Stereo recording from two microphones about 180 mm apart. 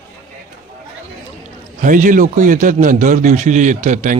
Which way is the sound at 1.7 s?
45° right (ahead or behind).